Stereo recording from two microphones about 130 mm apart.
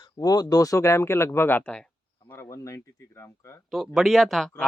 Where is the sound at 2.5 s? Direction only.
25° left (ahead or behind).